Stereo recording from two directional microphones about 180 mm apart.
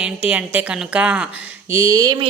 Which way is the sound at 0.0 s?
5° right (ahead or behind).